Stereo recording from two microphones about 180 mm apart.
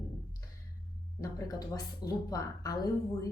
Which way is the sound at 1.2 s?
20° left (ahead or behind).